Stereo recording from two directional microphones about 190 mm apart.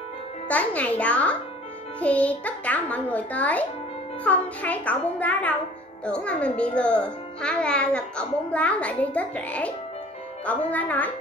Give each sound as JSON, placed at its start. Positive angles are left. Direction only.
{"t": 0.5, "sound": "a child's voice", "side_deg": 5}